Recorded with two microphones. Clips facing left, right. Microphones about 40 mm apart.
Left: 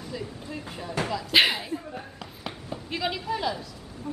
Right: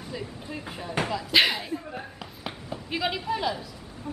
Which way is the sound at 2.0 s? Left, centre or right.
Centre.